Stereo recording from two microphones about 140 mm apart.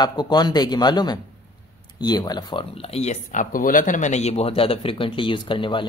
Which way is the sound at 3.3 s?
75° left (ahead or behind).